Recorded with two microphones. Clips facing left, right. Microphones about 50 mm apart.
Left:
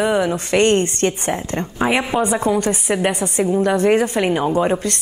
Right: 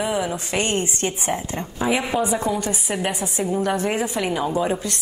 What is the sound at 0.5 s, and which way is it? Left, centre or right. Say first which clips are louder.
A woman's voice: left 9 dB; left.